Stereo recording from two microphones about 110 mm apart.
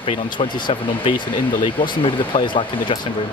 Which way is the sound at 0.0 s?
50° left (ahead or behind).